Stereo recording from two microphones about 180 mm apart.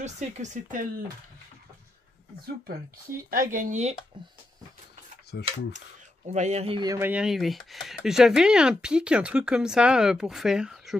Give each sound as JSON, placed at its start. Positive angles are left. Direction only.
{"t": 0.0, "sound": "speech", "side_deg": -40}
{"t": 2.4, "sound": "speech", "side_deg": -55}
{"t": 5.3, "sound": "speech", "side_deg": 70}
{"t": 6.2, "sound": "speech", "side_deg": -40}
{"t": 6.9, "sound": "speech", "side_deg": -10}